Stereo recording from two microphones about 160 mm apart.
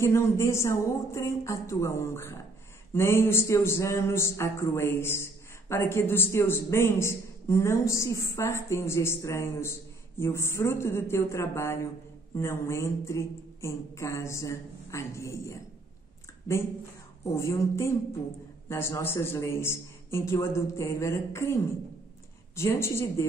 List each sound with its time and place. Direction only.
0.0 s speech: 15° left (ahead or behind)
17.2 s speech: 15° left (ahead or behind)
22.6 s speech: 15° left (ahead or behind)